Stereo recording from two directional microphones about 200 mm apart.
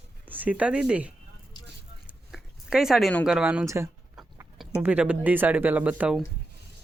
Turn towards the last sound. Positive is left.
turn(degrees=-5)  # may be behind; listen again after turning